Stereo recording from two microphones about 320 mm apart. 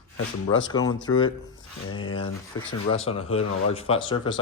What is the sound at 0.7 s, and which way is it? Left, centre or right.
Speech, centre.